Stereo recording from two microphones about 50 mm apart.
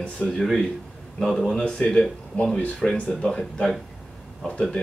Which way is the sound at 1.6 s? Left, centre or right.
Centre.